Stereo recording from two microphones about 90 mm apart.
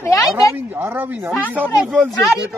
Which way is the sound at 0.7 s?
20° right (ahead or behind).